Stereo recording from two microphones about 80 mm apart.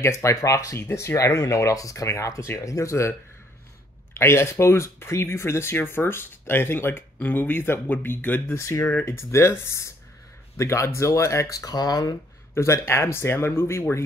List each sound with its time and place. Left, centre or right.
0.0 s speech: left
8.5 s speech: left
8.8 s speech: left
12.5 s speech: left